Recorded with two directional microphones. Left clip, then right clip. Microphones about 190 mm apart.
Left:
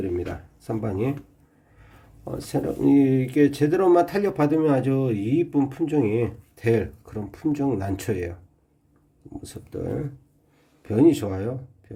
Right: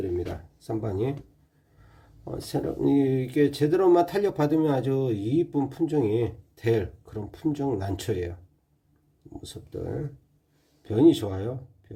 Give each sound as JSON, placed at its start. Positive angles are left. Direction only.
{"t": 0.0, "sound": "speech", "side_deg": 0}
{"t": 2.2, "sound": "speech", "side_deg": 0}
{"t": 9.4, "sound": "speech", "side_deg": 5}